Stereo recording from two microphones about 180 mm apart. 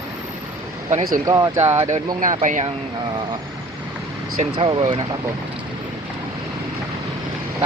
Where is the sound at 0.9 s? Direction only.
40° right (ahead or behind).